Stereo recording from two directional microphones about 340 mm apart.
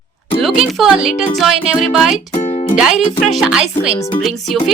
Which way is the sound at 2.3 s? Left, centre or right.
Centre.